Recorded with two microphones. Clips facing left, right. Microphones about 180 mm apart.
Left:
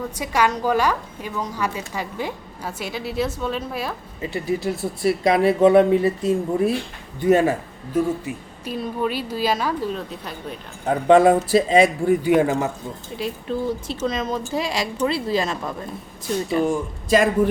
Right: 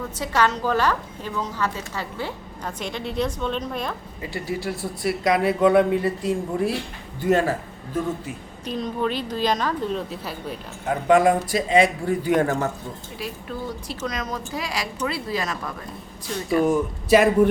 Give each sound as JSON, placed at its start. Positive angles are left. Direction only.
{"t": 0.2, "sound": "a woman's voice", "side_deg": 10}
{"t": 4.2, "sound": "a woman's voice", "side_deg": 20}
{"t": 8.6, "sound": "a woman's voice", "side_deg": 5}
{"t": 11.1, "sound": "speech", "side_deg": 30}
{"t": 12.2, "sound": "a woman's voice", "side_deg": 10}
{"t": 16.6, "sound": "speech", "side_deg": -5}